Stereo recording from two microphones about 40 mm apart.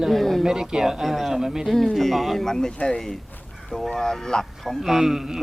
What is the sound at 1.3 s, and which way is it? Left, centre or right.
Speech, centre.